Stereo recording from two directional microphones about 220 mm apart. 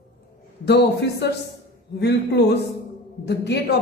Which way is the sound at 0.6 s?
50° left (ahead or behind).